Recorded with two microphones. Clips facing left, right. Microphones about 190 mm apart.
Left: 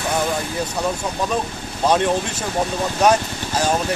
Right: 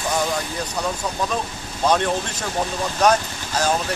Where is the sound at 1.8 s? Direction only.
10° left (ahead or behind).